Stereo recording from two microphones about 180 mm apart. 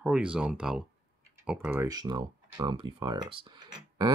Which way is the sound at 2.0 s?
25° right (ahead or behind).